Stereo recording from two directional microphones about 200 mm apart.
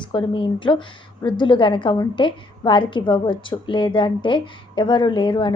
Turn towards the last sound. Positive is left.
turn(degrees=25)  # may be behind; listen again after turning